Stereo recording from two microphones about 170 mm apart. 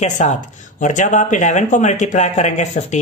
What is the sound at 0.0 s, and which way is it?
A woman's voice, 45° left (ahead or behind).